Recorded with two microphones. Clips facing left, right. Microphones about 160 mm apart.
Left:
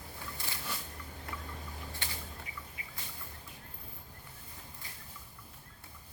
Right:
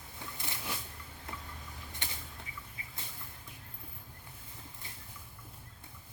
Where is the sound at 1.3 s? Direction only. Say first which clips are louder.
Left 1 dB; 20° right (ahead or behind).